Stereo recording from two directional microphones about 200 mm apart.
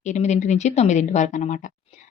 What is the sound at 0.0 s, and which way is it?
Speech, 35° left (ahead or behind).